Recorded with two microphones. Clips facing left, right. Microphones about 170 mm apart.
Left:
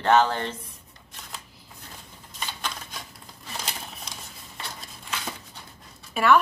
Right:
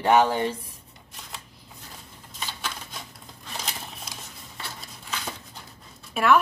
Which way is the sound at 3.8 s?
Centre (ahead or behind).